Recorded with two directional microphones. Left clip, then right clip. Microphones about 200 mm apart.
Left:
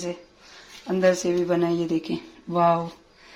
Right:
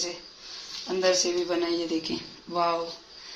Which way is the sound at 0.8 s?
50° left (ahead or behind).